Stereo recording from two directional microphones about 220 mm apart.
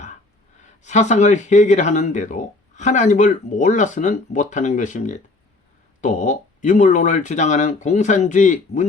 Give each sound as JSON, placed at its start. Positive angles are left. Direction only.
{"t": 0.6, "sound": "speech", "side_deg": 30}